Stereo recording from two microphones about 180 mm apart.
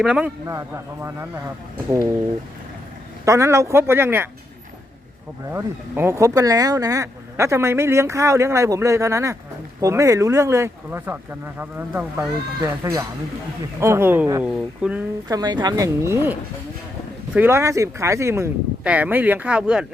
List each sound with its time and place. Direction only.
0.0 s speech: 5° right (ahead or behind)
3.2 s speech: 15° right (ahead or behind)
5.5 s speech: 15° right (ahead or behind)
15.3 s speech: 20° right (ahead or behind); by 19.8 s 5° right (ahead or behind)